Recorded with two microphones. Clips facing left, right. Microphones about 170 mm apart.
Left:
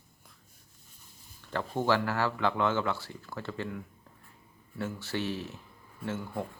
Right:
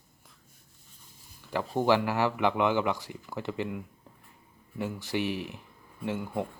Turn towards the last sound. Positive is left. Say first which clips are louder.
# right 3 dB
turn(degrees=-15)  # may be behind; listen again after turning